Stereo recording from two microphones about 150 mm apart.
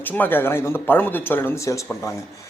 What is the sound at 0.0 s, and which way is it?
A man's voice, 10° left (ahead or behind).